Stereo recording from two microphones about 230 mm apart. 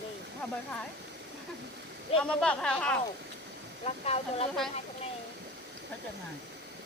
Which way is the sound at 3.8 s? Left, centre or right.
Left.